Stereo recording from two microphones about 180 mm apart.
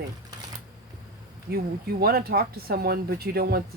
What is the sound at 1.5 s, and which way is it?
Speech, 60° right (ahead or behind).